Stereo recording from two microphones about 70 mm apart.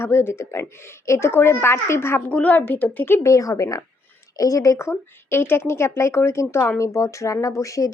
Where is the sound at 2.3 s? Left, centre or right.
Left.